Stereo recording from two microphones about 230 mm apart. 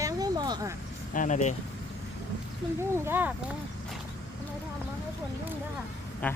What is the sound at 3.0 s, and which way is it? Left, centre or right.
Speech, centre.